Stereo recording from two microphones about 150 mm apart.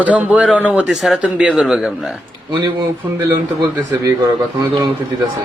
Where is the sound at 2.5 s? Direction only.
25° right (ahead or behind).